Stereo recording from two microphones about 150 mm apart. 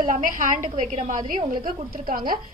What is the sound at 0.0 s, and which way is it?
A woman's voice, 65° right (ahead or behind).